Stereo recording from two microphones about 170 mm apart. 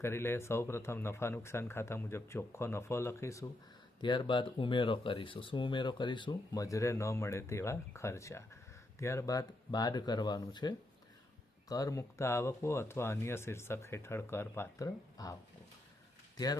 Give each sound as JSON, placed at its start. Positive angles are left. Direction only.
{"t": 0.0, "sound": "speech", "side_deg": 15}